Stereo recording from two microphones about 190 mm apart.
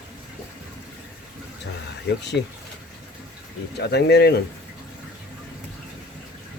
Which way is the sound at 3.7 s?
60° left (ahead or behind).